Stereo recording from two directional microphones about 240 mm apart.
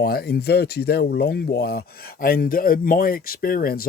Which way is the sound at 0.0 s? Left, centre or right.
Left.